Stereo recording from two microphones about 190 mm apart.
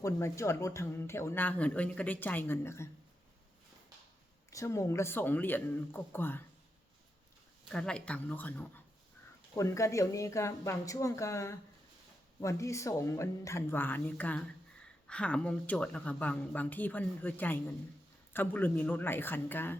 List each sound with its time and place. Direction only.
0.0 s speech: 15° left (ahead or behind)
4.5 s speech: 15° left (ahead or behind)
7.7 s speech: 5° left (ahead or behind)